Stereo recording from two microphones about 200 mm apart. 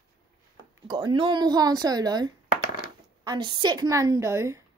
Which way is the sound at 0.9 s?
25° right (ahead or behind).